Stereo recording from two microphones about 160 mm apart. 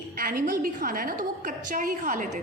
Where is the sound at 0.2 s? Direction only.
60° right (ahead or behind).